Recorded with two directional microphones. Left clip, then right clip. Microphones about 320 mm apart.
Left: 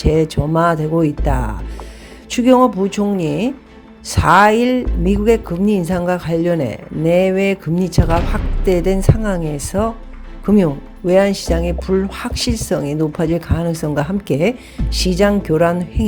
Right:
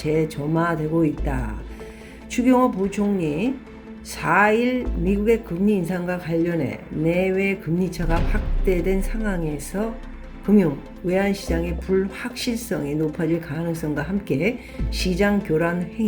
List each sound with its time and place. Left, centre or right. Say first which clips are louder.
0.0 s speech: left 7 dB; left